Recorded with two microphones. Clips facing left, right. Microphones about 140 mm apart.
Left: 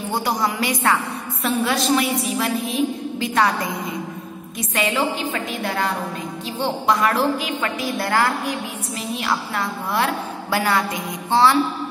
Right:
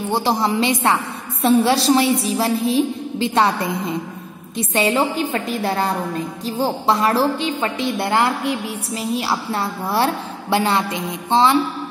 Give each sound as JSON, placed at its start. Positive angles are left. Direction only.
{"t": 0.1, "sound": "a woman's voice", "side_deg": -25}